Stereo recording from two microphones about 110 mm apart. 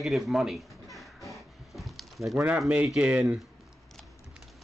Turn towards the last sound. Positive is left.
turn(degrees=-10)  # may be behind; listen again after turning